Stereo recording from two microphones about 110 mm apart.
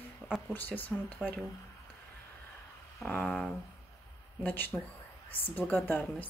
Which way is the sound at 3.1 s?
15° left (ahead or behind).